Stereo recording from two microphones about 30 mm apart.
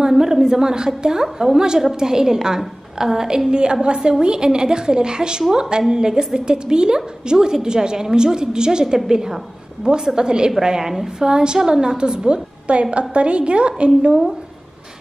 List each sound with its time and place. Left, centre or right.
0.1 s a woman's voice: centre
3.0 s a sound: centre
3.4 s a woman's voice: right
10.8 s a sound: centre
11.2 s a woman's voice: right
12.7 s a woman's voice: right